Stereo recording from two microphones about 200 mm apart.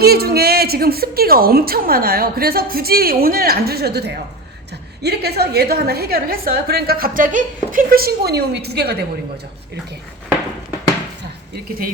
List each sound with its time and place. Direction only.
0.0 s a woman's voice: 50° right (ahead or behind)